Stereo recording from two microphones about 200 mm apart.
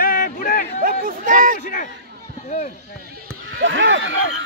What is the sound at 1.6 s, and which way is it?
Speech, 45° left (ahead or behind).